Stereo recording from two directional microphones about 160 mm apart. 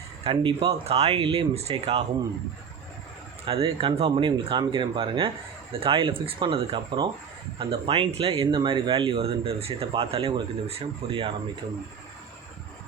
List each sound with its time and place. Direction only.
0.3 s speech: 35° right (ahead or behind)
3.4 s speech: 35° right (ahead or behind)